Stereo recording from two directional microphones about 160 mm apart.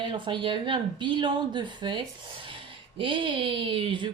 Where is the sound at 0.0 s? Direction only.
30° right (ahead or behind).